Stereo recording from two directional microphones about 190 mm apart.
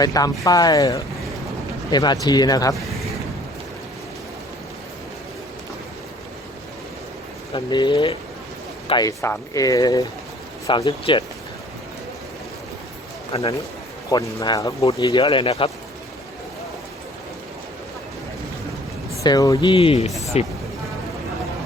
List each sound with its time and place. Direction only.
0.0 s speech: 20° left (ahead or behind)
7.5 s speech: 25° left (ahead or behind)
13.3 s speech: 30° left (ahead or behind)
14.1 s speech: 20° left (ahead or behind)
19.2 s speech: 20° left (ahead or behind)